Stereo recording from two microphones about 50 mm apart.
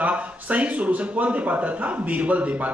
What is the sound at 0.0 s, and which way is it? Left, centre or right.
A man's voice, right.